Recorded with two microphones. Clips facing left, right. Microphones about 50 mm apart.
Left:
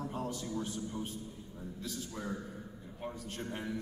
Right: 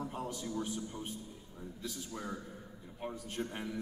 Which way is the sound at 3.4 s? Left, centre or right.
Centre.